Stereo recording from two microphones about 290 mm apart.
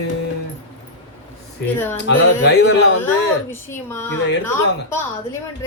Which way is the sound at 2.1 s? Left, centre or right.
Left.